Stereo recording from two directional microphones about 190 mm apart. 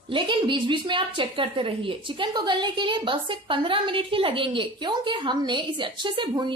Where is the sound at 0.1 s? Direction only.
25° right (ahead or behind).